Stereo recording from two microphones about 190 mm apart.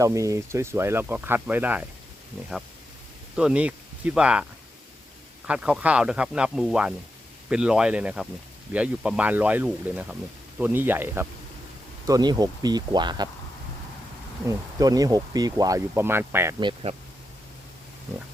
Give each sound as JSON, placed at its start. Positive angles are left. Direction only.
{"t": 0.0, "sound": "speech", "side_deg": -15}
{"t": 3.3, "sound": "speech", "side_deg": -5}
{"t": 5.5, "sound": "speech", "side_deg": -5}
{"t": 14.4, "sound": "speech", "side_deg": -20}
{"t": 16.6, "sound": "speech", "side_deg": -25}